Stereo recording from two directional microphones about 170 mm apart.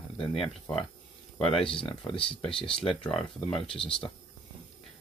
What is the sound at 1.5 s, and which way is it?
Speech, 30° left (ahead or behind).